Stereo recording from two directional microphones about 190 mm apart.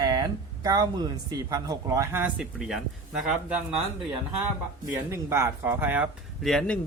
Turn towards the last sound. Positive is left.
turn(degrees=5)  # may be behind; listen again after turning